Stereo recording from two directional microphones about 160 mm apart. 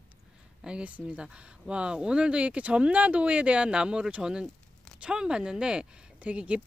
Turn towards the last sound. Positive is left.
turn(degrees=-5)  # may be behind; listen again after turning